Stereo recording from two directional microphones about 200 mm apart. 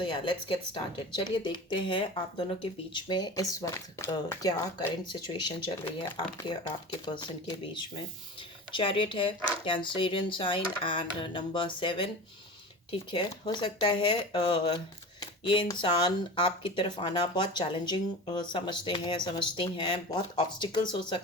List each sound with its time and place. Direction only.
0.0 s speech: 25° left (ahead or behind)